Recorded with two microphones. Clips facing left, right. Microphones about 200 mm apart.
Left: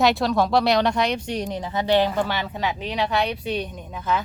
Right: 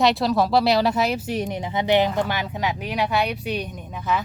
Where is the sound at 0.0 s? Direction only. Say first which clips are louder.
Even; centre (ahead or behind).